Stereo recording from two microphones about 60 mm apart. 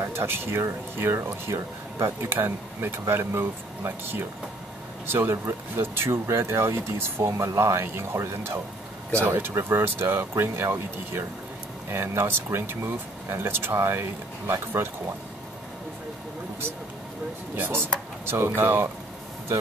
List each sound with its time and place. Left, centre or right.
0.0 s speech: right
17.6 s speech: right